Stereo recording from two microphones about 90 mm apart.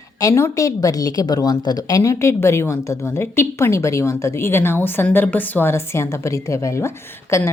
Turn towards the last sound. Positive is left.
turn(degrees=30)  # may be behind; listen again after turning